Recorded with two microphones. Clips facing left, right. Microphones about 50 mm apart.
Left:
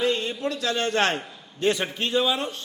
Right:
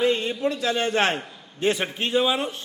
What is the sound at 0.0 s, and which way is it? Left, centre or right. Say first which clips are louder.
A man's voice: right 3 dB; centre.